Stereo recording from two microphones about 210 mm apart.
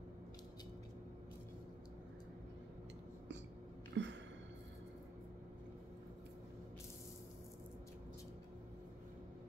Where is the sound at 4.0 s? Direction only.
55° right (ahead or behind).